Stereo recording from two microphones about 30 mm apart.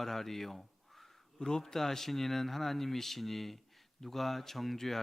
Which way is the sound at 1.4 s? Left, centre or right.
Centre.